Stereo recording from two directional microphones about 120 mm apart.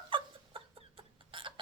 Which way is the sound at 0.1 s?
45° right (ahead or behind).